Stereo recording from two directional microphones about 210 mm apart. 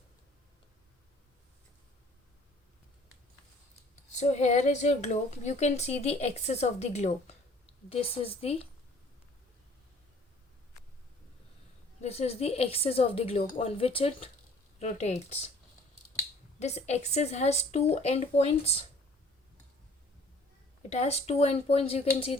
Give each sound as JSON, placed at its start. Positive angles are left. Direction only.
{"t": 4.1, "sound": "a woman's voice", "side_deg": 35}
{"t": 11.9, "sound": "a woman's voice", "side_deg": 30}
{"t": 16.6, "sound": "speech", "side_deg": 30}
{"t": 20.9, "sound": "a woman's voice", "side_deg": 30}